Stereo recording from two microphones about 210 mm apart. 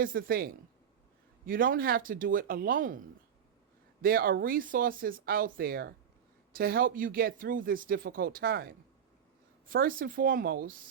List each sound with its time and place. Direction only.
0.0 s speech: 45° right (ahead or behind)
4.0 s speech: 45° right (ahead or behind)